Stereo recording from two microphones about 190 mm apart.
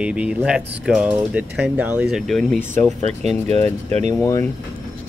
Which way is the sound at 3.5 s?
35° right (ahead or behind).